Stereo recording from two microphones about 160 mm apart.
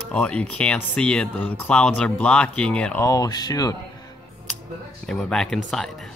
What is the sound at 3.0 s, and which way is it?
Speech, 25° left (ahead or behind).